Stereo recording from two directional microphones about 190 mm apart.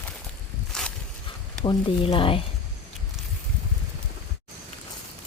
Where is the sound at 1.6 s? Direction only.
25° left (ahead or behind).